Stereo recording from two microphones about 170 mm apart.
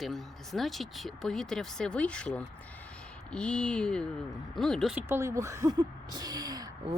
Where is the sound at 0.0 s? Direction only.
Centre (ahead or behind).